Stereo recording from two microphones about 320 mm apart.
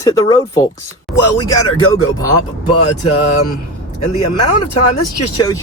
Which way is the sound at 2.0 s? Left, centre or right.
Centre.